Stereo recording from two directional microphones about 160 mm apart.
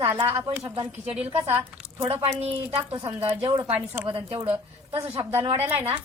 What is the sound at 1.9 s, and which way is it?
Speech, 35° right (ahead or behind).